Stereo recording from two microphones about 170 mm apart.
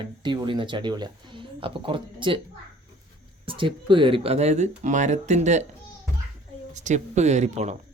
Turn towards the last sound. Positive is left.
turn(degrees=-40)  # may be behind; listen again after turning